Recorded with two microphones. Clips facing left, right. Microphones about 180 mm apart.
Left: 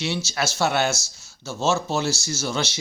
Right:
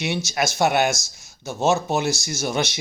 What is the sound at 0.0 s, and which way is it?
Speech, 15° right (ahead or behind).